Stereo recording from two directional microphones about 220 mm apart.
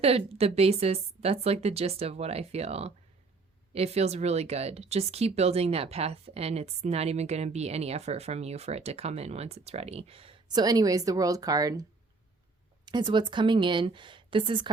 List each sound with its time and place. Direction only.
0.0 s speech: 25° right (ahead or behind)